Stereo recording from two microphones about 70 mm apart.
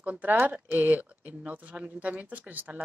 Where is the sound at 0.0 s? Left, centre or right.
Right.